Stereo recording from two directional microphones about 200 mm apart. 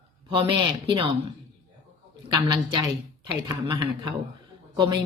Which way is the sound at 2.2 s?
20° right (ahead or behind).